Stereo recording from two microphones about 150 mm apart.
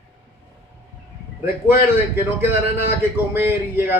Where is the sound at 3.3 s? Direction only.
15° right (ahead or behind).